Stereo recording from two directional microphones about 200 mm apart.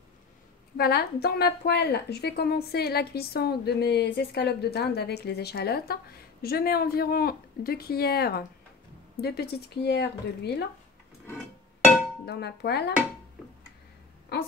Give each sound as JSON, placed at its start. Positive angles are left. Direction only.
{"t": 0.7, "sound": "a woman's voice", "side_deg": 50}
{"t": 11.2, "sound": "music", "side_deg": 10}
{"t": 12.3, "sound": "speech", "side_deg": 55}